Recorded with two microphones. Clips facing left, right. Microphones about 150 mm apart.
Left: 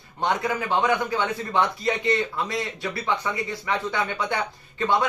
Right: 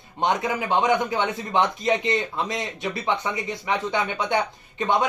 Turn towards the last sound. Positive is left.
turn(degrees=-20)  # may be behind; listen again after turning